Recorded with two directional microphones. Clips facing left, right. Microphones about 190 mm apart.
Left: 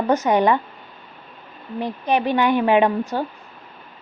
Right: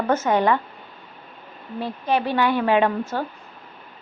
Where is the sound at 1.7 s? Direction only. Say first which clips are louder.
Left 2 dB; 15° left (ahead or behind).